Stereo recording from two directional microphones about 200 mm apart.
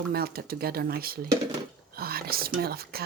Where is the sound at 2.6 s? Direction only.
50° right (ahead or behind).